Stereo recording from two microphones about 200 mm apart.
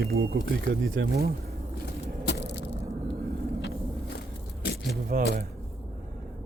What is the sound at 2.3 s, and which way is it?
Crushing, 60° left (ahead or behind).